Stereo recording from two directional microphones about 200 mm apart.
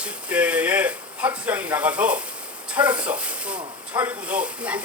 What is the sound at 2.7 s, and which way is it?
Speech, 5° right (ahead or behind).